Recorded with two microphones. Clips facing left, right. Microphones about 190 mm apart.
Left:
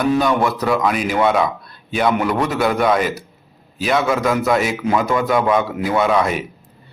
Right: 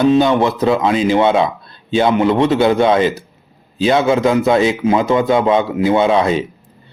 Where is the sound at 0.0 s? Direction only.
25° right (ahead or behind).